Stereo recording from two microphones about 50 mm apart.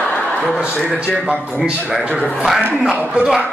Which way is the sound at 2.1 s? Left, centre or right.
Centre.